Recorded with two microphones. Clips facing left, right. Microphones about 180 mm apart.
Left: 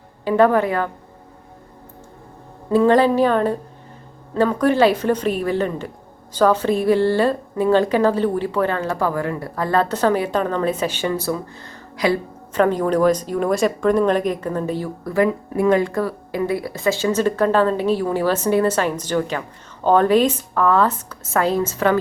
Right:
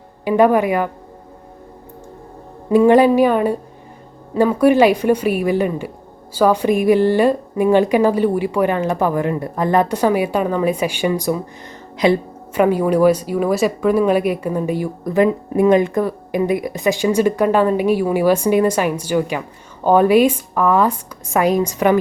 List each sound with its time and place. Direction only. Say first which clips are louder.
0.3 s speech: right 2 dB; 15° right (ahead or behind)
2.6 s speech: right 4 dB; 15° right (ahead or behind)
12.5 s speech: right 3 dB; 10° right (ahead or behind)